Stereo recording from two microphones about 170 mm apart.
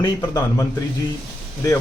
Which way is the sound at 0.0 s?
20° left (ahead or behind).